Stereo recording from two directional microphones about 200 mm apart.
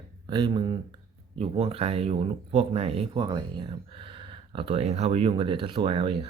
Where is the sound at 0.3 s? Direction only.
25° right (ahead or behind).